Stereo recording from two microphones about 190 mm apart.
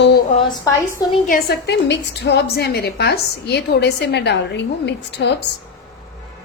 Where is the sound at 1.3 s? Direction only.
60° left (ahead or behind).